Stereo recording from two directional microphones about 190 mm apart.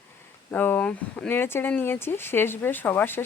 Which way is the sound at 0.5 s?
10° left (ahead or behind).